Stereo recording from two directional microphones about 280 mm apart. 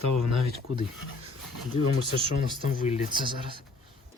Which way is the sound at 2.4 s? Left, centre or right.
Left.